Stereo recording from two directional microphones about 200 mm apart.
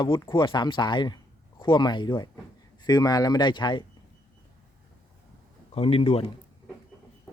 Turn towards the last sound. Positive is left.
turn(degrees=30)  # may be behind; listen again after turning